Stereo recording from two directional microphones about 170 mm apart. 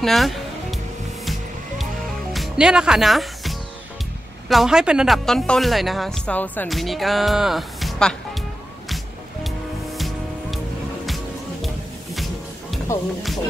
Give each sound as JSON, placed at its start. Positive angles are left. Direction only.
{"t": 0.0, "sound": "music", "side_deg": 0}
{"t": 2.3, "sound": "speech", "side_deg": 0}
{"t": 6.7, "sound": "music", "side_deg": 0}
{"t": 11.6, "sound": "music", "side_deg": 0}
{"t": 12.9, "sound": "speech", "side_deg": 15}